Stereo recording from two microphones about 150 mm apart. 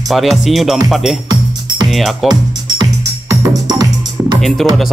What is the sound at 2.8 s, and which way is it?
Music, 25° right (ahead or behind).